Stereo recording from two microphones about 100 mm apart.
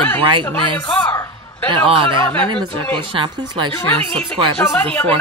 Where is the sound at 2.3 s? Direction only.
15° left (ahead or behind).